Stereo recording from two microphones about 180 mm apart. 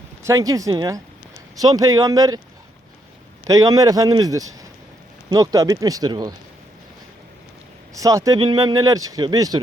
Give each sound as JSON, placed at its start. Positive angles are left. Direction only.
{"t": 0.2, "sound": "speech", "side_deg": -15}
{"t": 3.4, "sound": "speech", "side_deg": -20}
{"t": 7.9, "sound": "speech", "side_deg": -20}